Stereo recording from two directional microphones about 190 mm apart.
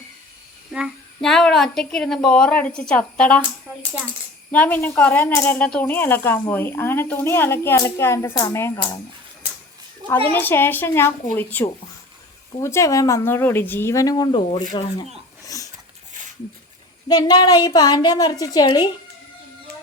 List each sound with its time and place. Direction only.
0.7 s a child's voice: centre (ahead or behind)
4.5 s speech: 10° left (ahead or behind)
10.1 s speech: 10° left (ahead or behind); by 14.7 s 25° left (ahead or behind)
15.4 s a sound: 20° left (ahead or behind)
17.1 s a woman's voice: 20° left (ahead or behind)